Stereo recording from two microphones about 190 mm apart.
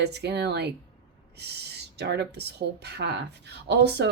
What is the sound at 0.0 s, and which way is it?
Speech, 60° right (ahead or behind).